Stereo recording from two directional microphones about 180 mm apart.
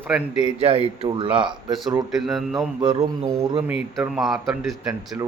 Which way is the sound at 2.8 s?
30° right (ahead or behind).